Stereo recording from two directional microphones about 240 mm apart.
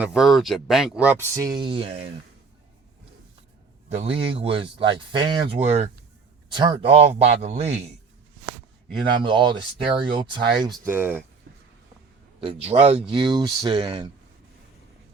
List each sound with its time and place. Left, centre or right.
0.0 s speech: centre; by 2.0 s right
3.9 s speech: right
9.2 s speech: centre
10.6 s speech: centre
12.4 s speech: right